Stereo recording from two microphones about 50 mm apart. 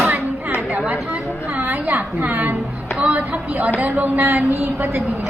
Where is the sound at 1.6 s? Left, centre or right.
Right.